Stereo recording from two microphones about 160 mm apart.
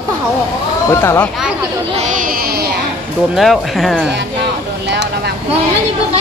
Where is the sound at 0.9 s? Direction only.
15° left (ahead or behind).